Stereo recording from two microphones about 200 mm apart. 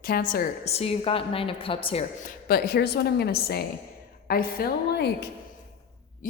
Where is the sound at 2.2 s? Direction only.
50° left (ahead or behind).